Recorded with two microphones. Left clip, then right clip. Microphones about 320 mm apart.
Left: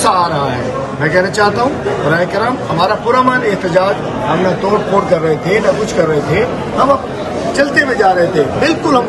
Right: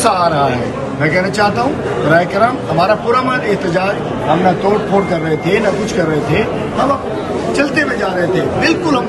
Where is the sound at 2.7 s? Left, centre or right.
Centre.